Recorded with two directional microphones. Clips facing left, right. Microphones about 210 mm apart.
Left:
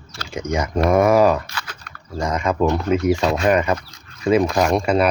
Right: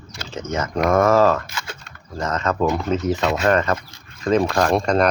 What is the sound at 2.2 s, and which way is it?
Speech, 10° left (ahead or behind).